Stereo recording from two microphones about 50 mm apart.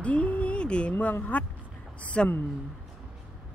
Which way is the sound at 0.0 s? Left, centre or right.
Left.